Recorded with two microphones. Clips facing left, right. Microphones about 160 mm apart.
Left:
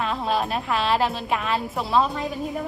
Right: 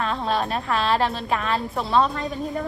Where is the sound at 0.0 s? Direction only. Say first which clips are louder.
Even; centre (ahead or behind).